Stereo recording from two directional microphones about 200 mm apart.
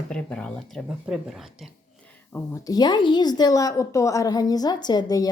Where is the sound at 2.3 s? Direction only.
15° left (ahead or behind).